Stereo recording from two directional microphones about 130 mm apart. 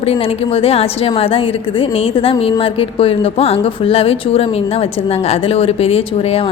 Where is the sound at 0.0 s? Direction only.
45° left (ahead or behind).